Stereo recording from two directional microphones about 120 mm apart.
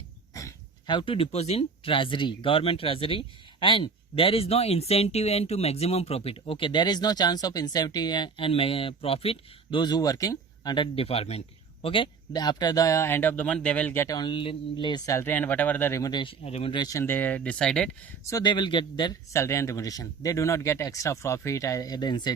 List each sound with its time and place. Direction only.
0.9 s speech: 45° left (ahead or behind)
9.8 s speech: 30° left (ahead or behind)
10.9 s a man's voice: 55° left (ahead or behind); by 14.2 s 20° left (ahead or behind)
14.2 s a man's voice: 45° left (ahead or behind)
16.2 s speech: 55° left (ahead or behind)
16.7 s speech: 30° left (ahead or behind); by 17.9 s 5° left (ahead or behind)
18.3 s speech: 35° left (ahead or behind)
19.3 s a man's voice: 25° left (ahead or behind)